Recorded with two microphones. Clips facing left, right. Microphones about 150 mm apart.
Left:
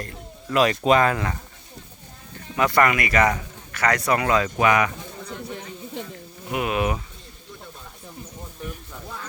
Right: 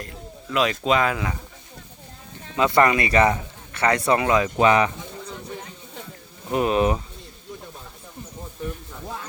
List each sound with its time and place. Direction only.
0.0 s a man's voice: centre (ahead or behind)
2.6 s a man's voice: 20° right (ahead or behind)
6.5 s speech: 30° right (ahead or behind)